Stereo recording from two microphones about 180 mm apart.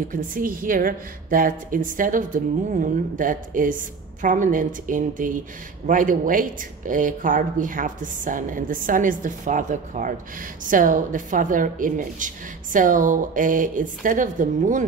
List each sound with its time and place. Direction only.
0.1 s a woman's voice: 50° right (ahead or behind)